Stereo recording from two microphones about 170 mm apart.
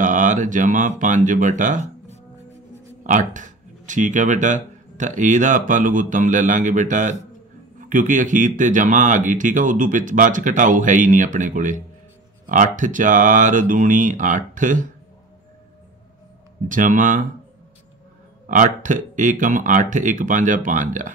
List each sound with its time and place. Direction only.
0.0 s speech: 50° right (ahead or behind)
3.0 s speech: 50° right (ahead or behind)
16.6 s speech: 50° right (ahead or behind)
18.5 s speech: 50° right (ahead or behind)